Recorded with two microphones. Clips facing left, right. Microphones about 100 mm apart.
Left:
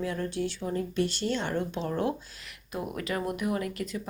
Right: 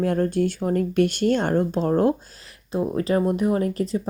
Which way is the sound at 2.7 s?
30° right (ahead or behind).